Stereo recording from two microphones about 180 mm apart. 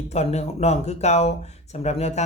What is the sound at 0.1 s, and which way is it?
Speech, 35° left (ahead or behind).